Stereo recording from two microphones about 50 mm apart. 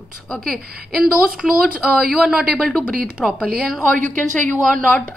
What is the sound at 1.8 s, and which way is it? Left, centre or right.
Speech, centre.